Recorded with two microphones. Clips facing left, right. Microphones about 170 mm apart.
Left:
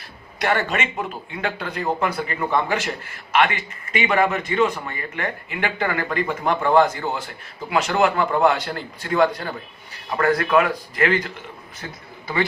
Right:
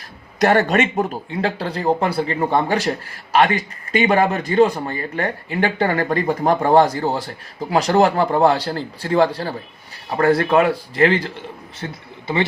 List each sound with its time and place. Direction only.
0.3 s speech: 40° right (ahead or behind)